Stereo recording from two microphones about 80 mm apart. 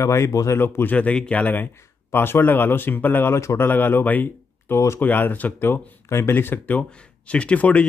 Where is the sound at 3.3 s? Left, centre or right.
Left.